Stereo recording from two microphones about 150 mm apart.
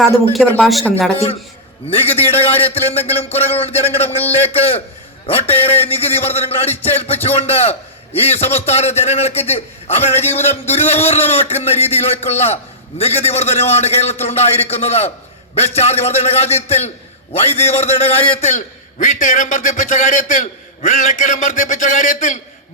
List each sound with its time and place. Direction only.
0.6 s speech: centre (ahead or behind)
1.9 s a man's voice: 40° left (ahead or behind)